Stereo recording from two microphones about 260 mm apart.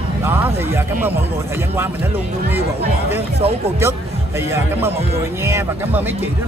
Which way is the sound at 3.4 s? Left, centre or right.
Right.